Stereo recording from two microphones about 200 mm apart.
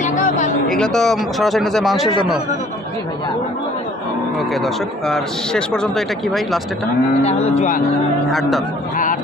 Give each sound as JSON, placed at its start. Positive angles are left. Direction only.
{"t": 0.0, "sound": "a sound", "side_deg": 40}
{"t": 0.7, "sound": "a man's voice", "side_deg": 0}
{"t": 4.4, "sound": "a man's voice", "side_deg": 0}
{"t": 7.3, "sound": "speech", "side_deg": 30}
{"t": 8.3, "sound": "a man's voice", "side_deg": 0}